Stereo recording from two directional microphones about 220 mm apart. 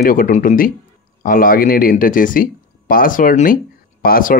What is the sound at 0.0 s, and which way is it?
Speech, 40° left (ahead or behind).